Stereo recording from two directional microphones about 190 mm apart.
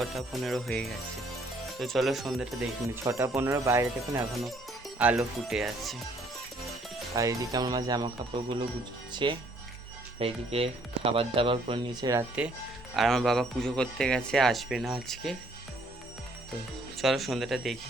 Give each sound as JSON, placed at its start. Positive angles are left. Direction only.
{"t": 0.0, "sound": "speech", "side_deg": 0}
{"t": 2.9, "sound": "speech", "side_deg": -15}
{"t": 7.2, "sound": "speech", "side_deg": -20}
{"t": 13.0, "sound": "speech", "side_deg": 0}
{"t": 17.0, "sound": "speech", "side_deg": 0}